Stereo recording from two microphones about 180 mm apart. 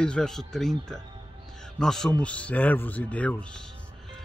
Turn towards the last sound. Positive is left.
turn(degrees=10)  # may be behind; listen again after turning